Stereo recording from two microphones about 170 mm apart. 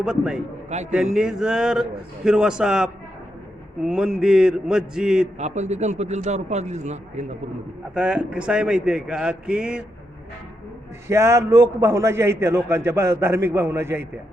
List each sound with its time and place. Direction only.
0.0 s speech: 5° right (ahead or behind)
0.7 s a man's voice: 40° right (ahead or behind)
1.1 s speech: 5° right (ahead or behind)
5.4 s a man's voice: 40° right (ahead or behind)
7.9 s speech: 5° right (ahead or behind)
11.1 s a man's voice: 15° right (ahead or behind)